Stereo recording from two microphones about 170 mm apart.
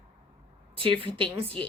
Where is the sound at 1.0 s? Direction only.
30° right (ahead or behind).